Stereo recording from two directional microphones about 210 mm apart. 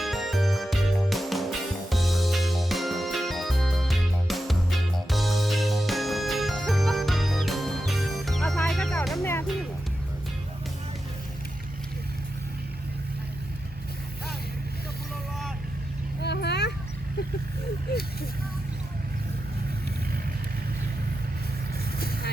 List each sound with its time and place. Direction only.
0.0 s music: centre (ahead or behind)
16.2 s vehicle: 55° left (ahead or behind)
21.9 s vehicle: 45° left (ahead or behind)